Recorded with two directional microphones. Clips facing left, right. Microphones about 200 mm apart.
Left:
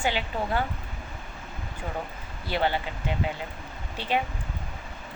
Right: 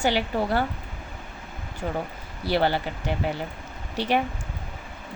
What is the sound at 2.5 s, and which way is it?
Speech, 35° right (ahead or behind).